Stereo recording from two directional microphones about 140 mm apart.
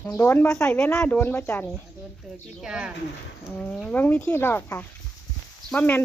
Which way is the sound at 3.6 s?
10° left (ahead or behind).